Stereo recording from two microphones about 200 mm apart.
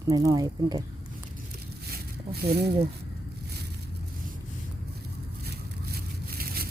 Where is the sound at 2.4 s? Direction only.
55° right (ahead or behind).